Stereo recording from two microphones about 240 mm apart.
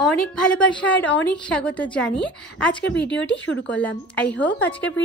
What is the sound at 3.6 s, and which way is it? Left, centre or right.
A woman's voice, centre.